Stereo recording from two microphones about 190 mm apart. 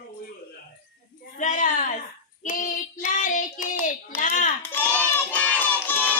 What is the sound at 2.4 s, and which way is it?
Child singing, 40° left (ahead or behind).